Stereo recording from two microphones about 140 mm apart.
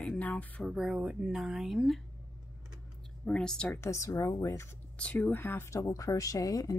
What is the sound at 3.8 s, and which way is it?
Speech, 20° left (ahead or behind).